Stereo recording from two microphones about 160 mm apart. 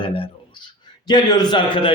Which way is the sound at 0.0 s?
35° left (ahead or behind).